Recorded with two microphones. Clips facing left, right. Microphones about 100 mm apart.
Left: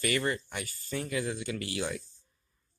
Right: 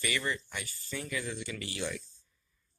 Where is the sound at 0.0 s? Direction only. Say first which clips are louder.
Left 4 dB; 45° left (ahead or behind).